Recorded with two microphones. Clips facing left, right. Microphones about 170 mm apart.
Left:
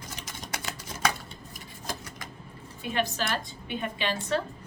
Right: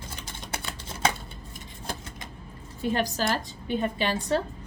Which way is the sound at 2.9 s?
40° right (ahead or behind).